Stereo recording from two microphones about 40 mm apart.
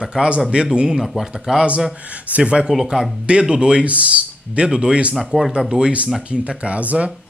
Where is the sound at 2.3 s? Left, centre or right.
Right.